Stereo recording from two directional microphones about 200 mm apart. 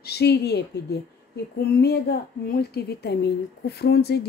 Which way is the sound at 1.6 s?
50° left (ahead or behind).